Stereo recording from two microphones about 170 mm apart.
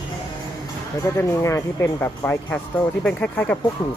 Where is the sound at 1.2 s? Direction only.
15° left (ahead or behind).